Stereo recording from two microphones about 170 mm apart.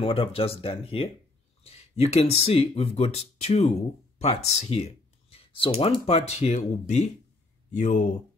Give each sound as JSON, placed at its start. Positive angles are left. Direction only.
{"t": 0.0, "sound": "speech", "side_deg": 35}